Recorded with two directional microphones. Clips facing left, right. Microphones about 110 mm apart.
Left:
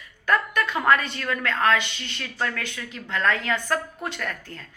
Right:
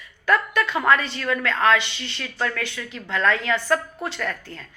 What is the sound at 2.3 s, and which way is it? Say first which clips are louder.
A woman's voice: right 2 dB; 30° left (ahead or behind).